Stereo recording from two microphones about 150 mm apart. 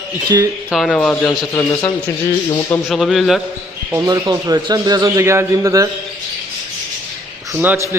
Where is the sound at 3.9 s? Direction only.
20° right (ahead or behind).